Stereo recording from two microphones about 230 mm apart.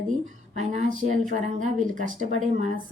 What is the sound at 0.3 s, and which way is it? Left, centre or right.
Speech, right.